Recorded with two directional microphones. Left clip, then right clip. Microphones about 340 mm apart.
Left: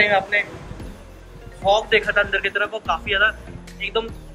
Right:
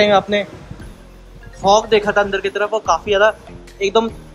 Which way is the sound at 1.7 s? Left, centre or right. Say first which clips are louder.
Right 4 dB; centre.